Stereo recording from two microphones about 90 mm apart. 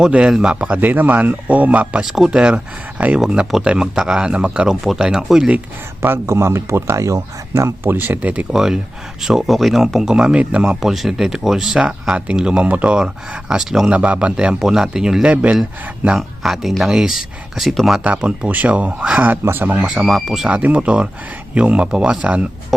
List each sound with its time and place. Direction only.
0.0 s speech: 10° right (ahead or behind)
6.0 s speech: 30° right (ahead or behind)
8.5 s speech: 5° right (ahead or behind)
16.0 s speech: 5° right (ahead or behind)
18.0 s speech: 15° right (ahead or behind)
19.8 s speech: 5° right (ahead or behind)
20.5 s speech: 15° right (ahead or behind)